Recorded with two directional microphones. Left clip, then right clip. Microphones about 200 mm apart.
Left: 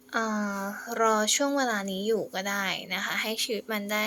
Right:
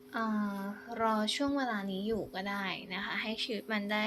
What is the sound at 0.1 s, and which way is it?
Speech, 30° left (ahead or behind).